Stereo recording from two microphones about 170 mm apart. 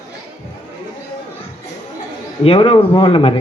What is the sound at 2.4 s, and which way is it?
Speech, 35° left (ahead or behind).